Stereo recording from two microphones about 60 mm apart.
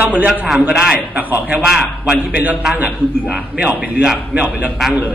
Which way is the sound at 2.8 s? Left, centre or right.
Right.